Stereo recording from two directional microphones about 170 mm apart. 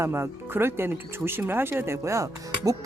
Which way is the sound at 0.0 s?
15° right (ahead or behind).